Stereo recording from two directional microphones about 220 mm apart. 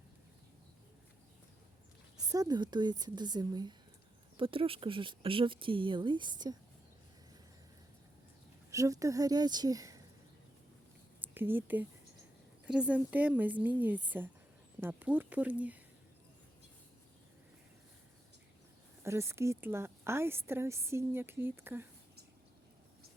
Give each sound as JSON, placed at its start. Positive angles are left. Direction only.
{"t": 2.1, "sound": "speech", "side_deg": -15}
{"t": 8.7, "sound": "a woman's voice", "side_deg": -15}
{"t": 11.2, "sound": "a woman's voice", "side_deg": -10}
{"t": 19.0, "sound": "a woman's voice", "side_deg": -10}